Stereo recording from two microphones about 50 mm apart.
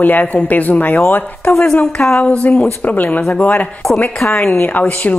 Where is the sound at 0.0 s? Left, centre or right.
Left.